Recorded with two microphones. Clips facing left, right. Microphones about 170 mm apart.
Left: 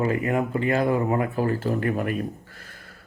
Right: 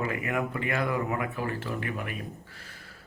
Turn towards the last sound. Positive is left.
turn(degrees=50)  # may be behind; listen again after turning